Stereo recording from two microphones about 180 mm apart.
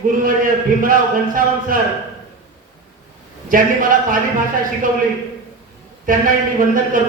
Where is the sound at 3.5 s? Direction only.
50° right (ahead or behind).